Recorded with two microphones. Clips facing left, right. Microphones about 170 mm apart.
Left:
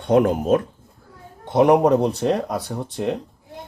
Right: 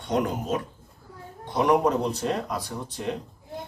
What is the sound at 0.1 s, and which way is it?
Speech, 60° left (ahead or behind).